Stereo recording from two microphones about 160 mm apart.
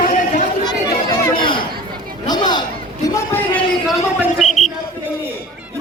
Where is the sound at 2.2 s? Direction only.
25° left (ahead or behind).